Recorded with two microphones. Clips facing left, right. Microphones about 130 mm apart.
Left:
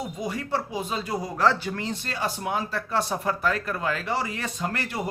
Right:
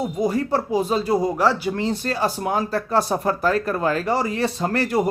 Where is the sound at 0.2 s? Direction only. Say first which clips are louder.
Right 8 dB; 40° right (ahead or behind).